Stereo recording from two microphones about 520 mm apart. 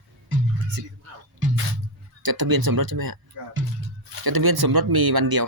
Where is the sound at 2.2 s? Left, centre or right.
Right.